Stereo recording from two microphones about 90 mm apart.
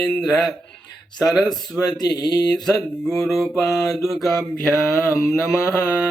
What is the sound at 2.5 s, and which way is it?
Mantra, 5° left (ahead or behind).